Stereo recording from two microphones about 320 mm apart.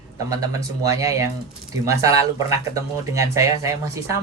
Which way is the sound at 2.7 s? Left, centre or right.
Centre.